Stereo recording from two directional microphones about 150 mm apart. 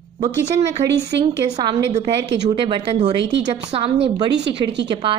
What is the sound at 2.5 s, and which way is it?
A woman's voice, 35° right (ahead or behind).